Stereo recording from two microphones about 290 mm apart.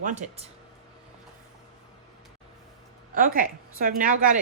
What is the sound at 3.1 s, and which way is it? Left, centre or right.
Speech, right.